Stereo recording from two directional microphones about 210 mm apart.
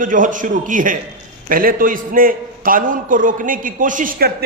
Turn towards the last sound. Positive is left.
turn(degrees=-40)  # may be behind; listen again after turning